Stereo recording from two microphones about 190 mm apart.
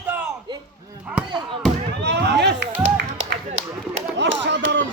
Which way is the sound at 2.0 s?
60° right (ahead or behind).